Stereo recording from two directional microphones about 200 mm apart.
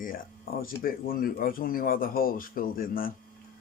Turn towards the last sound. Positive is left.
turn(degrees=45)  # may be behind; listen again after turning